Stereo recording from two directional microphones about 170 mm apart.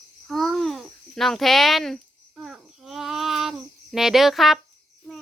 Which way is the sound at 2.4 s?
Centre (ahead or behind).